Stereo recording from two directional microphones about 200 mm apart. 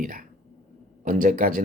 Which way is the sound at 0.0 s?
45° right (ahead or behind).